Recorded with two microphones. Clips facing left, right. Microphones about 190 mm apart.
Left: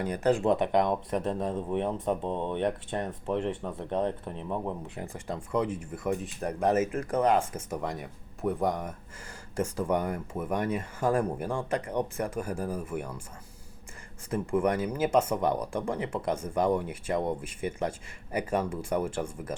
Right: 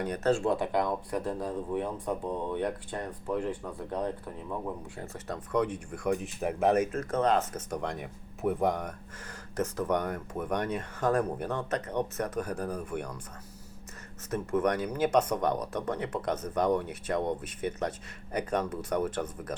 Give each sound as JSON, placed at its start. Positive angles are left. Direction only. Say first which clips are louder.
{"t": 0.0, "sound": "speech", "louder": "left 2 dB", "side_deg": 10}
{"t": 6.9, "sound": "speech", "louder": "left 2 dB", "side_deg": 15}
{"t": 14.3, "sound": "speech", "louder": "left 1 dB", "side_deg": 10}